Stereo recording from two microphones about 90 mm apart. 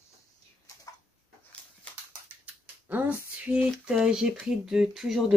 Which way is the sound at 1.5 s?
15° left (ahead or behind).